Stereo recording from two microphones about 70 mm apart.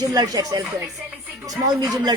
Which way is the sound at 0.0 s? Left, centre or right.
Right.